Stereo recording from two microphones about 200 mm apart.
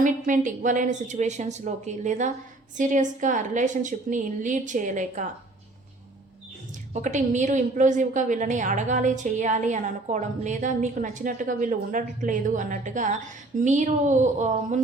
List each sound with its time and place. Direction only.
0.0 s a woman's voice: 40° right (ahead or behind)
6.9 s a woman's voice: 40° right (ahead or behind)